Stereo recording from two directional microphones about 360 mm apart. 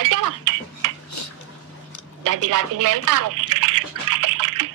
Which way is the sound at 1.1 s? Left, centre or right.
Left.